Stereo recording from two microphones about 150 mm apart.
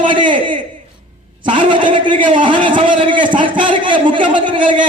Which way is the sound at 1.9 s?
35° right (ahead or behind).